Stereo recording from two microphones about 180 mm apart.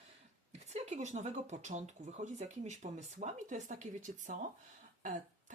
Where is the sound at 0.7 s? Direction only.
40° right (ahead or behind).